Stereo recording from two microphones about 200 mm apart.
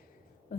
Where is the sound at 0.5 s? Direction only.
45° left (ahead or behind).